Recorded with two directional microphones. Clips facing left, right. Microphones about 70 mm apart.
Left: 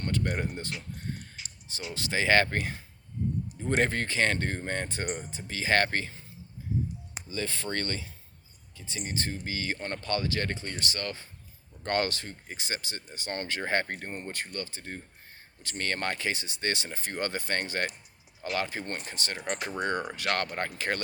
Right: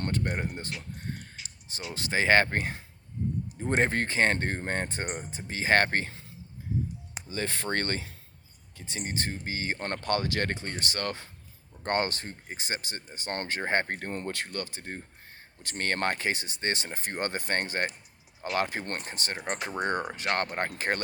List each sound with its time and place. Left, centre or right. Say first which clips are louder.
0.2 s speech: even; right
1.7 s speech: right 1 dB; right
7.3 s speech: right 2 dB; right
9.8 s speech: right 3 dB; right
11.8 s speech: even; right
14.1 s speech: right 3 dB; right
19.0 s speech: right 1 dB; right
19.5 s speech: right 1 dB; right